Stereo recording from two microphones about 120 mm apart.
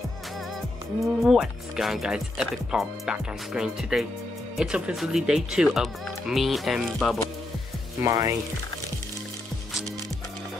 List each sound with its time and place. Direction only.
1.0 s speech: centre (ahead or behind)
8.0 s speech: 25° right (ahead or behind)